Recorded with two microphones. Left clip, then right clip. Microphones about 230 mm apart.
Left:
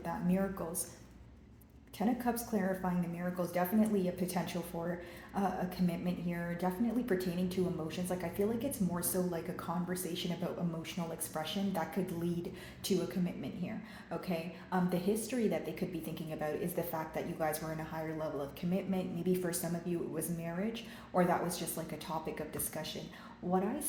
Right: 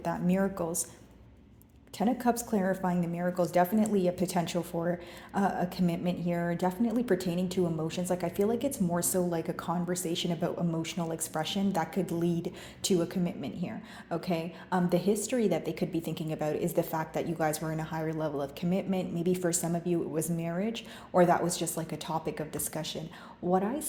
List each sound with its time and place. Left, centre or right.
0.0 s a woman's voice: right
2.0 s a woman's voice: right